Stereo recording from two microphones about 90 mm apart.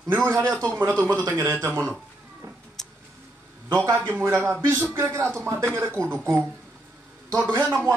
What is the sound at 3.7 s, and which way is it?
A man's voice, 30° right (ahead or behind).